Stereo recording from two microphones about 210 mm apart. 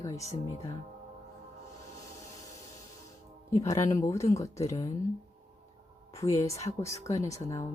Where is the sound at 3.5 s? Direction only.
15° left (ahead or behind).